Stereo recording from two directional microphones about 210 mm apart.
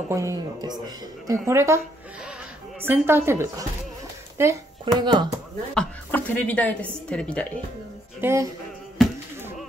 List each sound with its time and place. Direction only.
0.1 s a woman's voice: 15° right (ahead or behind)
2.8 s a woman's voice: 10° right (ahead or behind)
5.8 s a woman's voice: 10° left (ahead or behind)
8.2 s a woman's voice: 15° right (ahead or behind)